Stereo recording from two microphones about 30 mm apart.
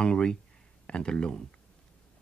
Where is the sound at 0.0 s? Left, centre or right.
Left.